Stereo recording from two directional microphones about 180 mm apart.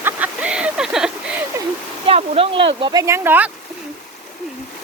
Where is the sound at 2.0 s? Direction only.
35° right (ahead or behind); by 3.5 s 10° right (ahead or behind).